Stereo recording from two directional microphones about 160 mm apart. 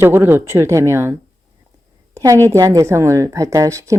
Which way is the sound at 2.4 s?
20° right (ahead or behind).